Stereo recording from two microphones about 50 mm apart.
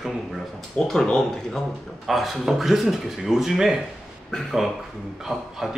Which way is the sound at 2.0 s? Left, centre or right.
Centre.